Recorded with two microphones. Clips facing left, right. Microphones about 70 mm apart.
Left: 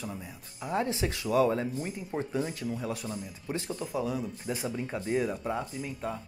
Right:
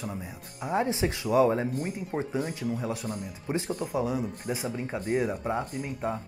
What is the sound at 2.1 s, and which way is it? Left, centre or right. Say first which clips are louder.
Speech: right 1 dB; centre.